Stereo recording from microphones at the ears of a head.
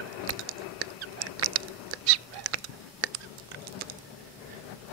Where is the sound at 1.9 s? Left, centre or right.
Right.